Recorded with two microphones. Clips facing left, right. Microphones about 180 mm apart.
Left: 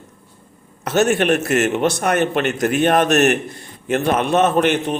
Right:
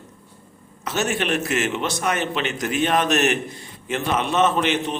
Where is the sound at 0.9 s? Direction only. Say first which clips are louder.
Left 7 dB; 55° left (ahead or behind).